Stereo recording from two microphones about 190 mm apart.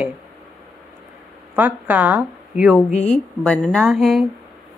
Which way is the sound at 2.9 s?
35° left (ahead or behind).